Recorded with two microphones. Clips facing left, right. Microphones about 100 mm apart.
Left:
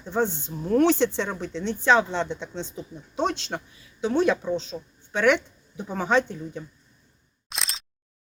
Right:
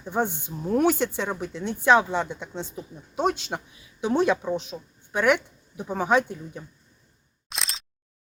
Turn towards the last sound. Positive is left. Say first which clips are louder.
# even
turn(degrees=0)  # may be behind; listen again after turning